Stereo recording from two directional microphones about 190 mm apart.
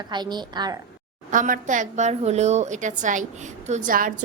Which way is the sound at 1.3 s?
40° right (ahead or behind).